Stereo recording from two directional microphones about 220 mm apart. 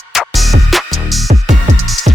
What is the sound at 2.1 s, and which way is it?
Music, 30° right (ahead or behind).